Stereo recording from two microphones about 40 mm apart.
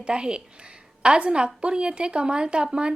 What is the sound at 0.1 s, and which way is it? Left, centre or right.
Speech, right.